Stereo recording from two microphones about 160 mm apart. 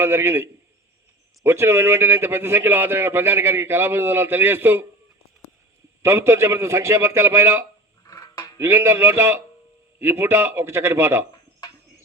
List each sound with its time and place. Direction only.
0.0 s a man's voice: 15° right (ahead or behind)
1.5 s a man's voice: 15° right (ahead or behind)
6.0 s a man's voice: 15° right (ahead or behind)
8.0 s music: 25° left (ahead or behind)
8.5 s a man's voice: 15° right (ahead or behind)